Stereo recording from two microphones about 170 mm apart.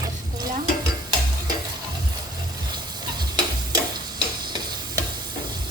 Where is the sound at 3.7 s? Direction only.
25° right (ahead or behind).